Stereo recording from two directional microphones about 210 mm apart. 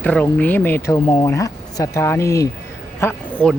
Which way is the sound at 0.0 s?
5° left (ahead or behind).